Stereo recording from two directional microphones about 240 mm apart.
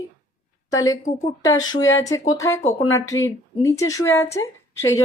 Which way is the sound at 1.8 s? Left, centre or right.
Left.